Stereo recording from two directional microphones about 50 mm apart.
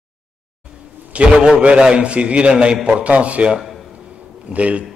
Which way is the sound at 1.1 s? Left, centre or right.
Right.